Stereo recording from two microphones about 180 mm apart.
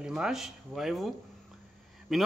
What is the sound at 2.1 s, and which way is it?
Speech, centre (ahead or behind).